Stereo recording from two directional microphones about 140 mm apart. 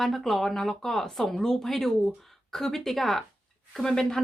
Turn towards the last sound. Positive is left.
turn(degrees=5)  # may be behind; listen again after turning